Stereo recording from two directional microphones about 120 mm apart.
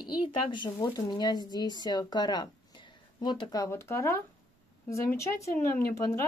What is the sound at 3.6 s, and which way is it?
Speech, 25° left (ahead or behind).